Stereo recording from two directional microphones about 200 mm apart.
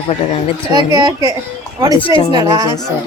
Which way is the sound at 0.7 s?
20° right (ahead or behind).